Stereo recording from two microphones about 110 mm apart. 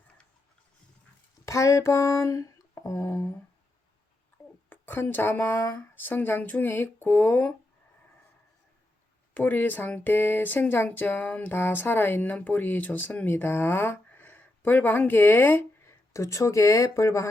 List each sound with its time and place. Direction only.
1.5 s a sound: 25° left (ahead or behind)
4.7 s speech: 20° left (ahead or behind)
9.3 s speech: 15° left (ahead or behind)